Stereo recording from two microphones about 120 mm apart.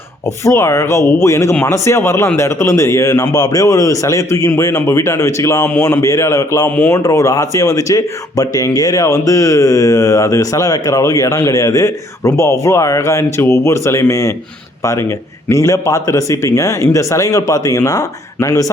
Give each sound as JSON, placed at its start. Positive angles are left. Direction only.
{"t": 0.4, "sound": "speech", "side_deg": 25}
{"t": 15.4, "sound": "speech", "side_deg": 25}